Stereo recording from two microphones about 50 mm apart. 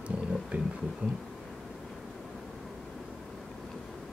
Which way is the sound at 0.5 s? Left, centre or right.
Right.